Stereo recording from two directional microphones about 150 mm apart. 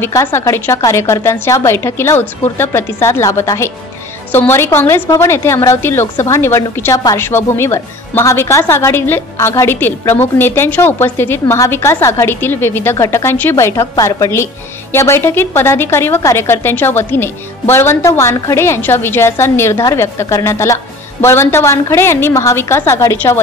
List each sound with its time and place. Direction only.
0.0 s a woman's voice: 15° left (ahead or behind)